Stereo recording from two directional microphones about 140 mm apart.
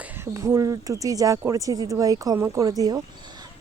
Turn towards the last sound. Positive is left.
turn(degrees=-25)  # may be behind; listen again after turning